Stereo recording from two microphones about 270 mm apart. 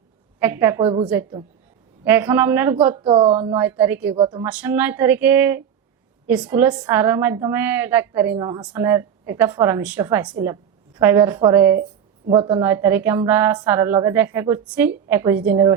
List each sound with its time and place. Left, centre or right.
0.3 s a woman's voice: centre
4.4 s a woman's voice: centre